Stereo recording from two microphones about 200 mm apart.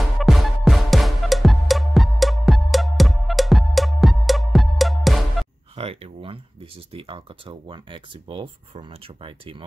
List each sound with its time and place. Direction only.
0.2 s music: centre (ahead or behind)
5.8 s speech: 30° right (ahead or behind)